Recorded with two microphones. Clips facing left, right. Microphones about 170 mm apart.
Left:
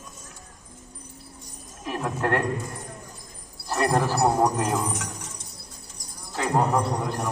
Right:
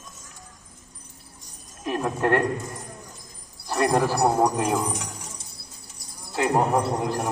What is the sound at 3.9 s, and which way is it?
Speech, 10° right (ahead or behind).